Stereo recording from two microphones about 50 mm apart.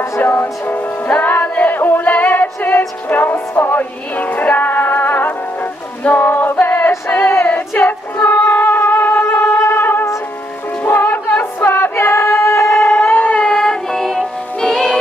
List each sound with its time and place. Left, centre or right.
0.2 s speech: left
1.0 s music: left
11.7 s female singing: left
12.8 s a sound: left
13.4 s music: centre